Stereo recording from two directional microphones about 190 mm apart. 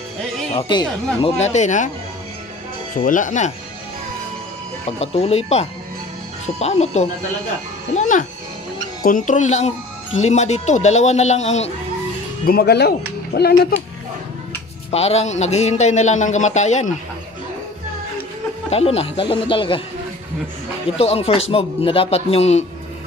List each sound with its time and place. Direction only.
0.6 s speech: 25° left (ahead or behind)
1.4 s speech: 40° left (ahead or behind)
3.0 s speech: 45° left (ahead or behind)
4.9 s speech: 30° left (ahead or behind)
12.4 s speech: 55° left (ahead or behind)
14.9 s speech: 35° left (ahead or behind)
18.7 s speech: 30° left (ahead or behind)
21.0 s speech: 30° left (ahead or behind)